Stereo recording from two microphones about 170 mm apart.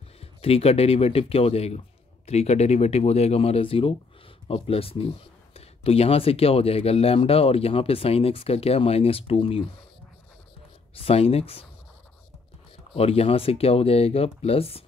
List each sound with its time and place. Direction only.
0.2 s speech: 35° left (ahead or behind)
11.0 s speech: 35° left (ahead or behind)
12.9 s speech: 35° left (ahead or behind)